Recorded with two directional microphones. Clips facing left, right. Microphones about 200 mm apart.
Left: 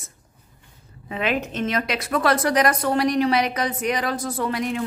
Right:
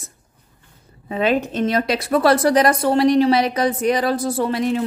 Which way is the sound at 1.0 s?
35° right (ahead or behind).